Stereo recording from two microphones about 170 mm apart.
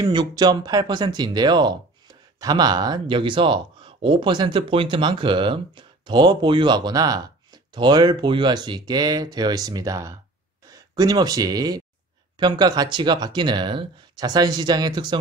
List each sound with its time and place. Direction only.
0.0 s speech: 25° right (ahead or behind)